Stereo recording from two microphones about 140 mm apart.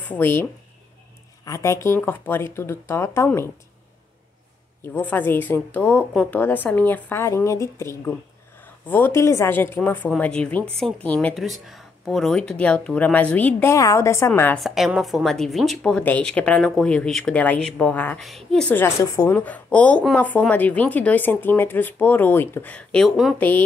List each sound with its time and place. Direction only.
0.0 s speech: 15° left (ahead or behind)
4.9 s a woman's voice: 15° left (ahead or behind)
14.6 s speech: centre (ahead or behind)
18.9 s a woman's voice: 25° left (ahead or behind)
19.3 s speech: 10° left (ahead or behind)